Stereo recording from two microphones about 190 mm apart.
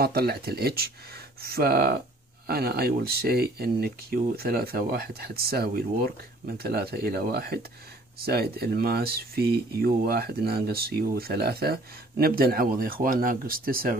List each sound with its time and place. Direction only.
0.0 s speech: 55° right (ahead or behind)